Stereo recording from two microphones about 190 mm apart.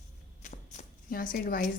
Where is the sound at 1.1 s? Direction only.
50° left (ahead or behind).